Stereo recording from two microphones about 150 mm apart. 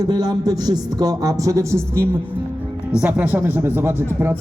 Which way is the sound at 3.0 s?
10° right (ahead or behind).